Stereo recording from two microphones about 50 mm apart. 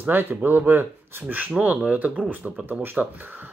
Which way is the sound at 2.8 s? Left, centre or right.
Right.